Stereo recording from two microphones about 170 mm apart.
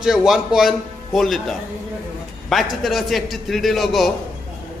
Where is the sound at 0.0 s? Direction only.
5° right (ahead or behind).